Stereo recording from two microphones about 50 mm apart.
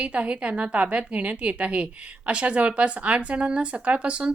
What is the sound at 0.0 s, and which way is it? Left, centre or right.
A woman's voice, right.